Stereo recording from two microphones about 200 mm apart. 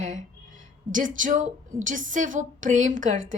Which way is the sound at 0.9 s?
40° right (ahead or behind).